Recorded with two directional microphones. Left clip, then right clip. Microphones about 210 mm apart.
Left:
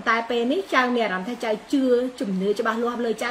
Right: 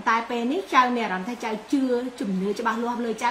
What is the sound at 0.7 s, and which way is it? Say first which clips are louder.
Speech: right 2 dB; 10° left (ahead or behind).